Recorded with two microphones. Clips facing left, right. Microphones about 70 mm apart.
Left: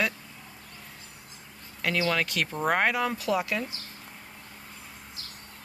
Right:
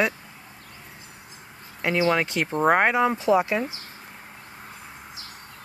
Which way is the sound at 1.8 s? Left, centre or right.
Right.